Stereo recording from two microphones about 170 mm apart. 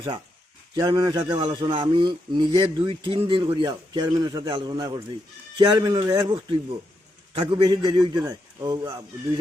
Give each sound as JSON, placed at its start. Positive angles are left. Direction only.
{"t": 0.8, "sound": "a man's voice", "side_deg": -25}